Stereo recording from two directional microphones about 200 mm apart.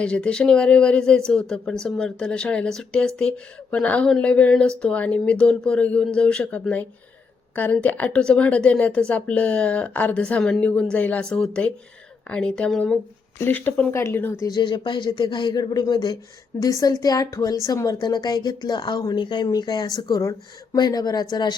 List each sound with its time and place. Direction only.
0.0 s a woman's voice: 5° left (ahead or behind); by 21.5 s 20° left (ahead or behind)